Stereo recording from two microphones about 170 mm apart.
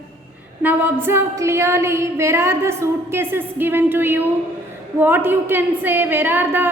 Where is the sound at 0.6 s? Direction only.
10° right (ahead or behind).